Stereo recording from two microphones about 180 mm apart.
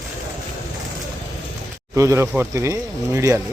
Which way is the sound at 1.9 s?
15° right (ahead or behind).